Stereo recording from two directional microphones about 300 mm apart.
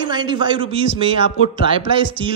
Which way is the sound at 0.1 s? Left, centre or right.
Centre.